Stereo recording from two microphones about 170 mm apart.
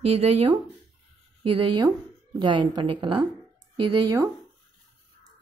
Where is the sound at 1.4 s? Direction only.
30° right (ahead or behind).